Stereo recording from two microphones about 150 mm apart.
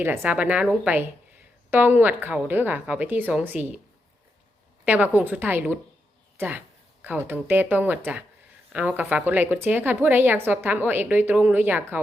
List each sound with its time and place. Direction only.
0.0 s a woman's voice: 15° right (ahead or behind)
4.9 s a woman's voice: 10° right (ahead or behind)